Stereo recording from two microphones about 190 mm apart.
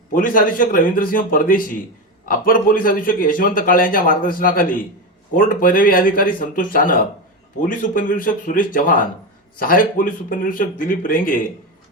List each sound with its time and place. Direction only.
0.1 s a man's voice: 45° left (ahead or behind)